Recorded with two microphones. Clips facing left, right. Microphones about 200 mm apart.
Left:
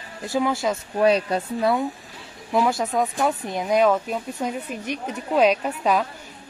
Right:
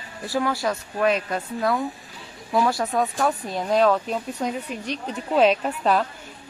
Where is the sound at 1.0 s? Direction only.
30° left (ahead or behind).